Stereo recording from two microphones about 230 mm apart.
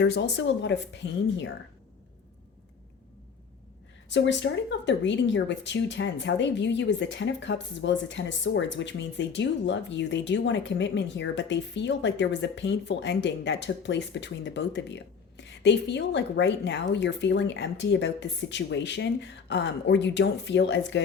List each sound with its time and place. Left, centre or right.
0.0 s speech: left
4.1 s speech: left